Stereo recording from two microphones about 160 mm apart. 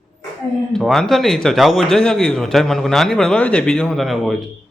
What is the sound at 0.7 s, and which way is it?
A man's voice, centre (ahead or behind).